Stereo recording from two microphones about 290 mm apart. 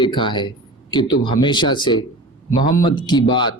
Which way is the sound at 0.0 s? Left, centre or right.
Centre.